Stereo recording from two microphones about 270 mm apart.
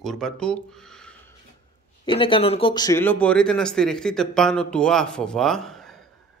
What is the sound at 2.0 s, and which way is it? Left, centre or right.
Speech, centre.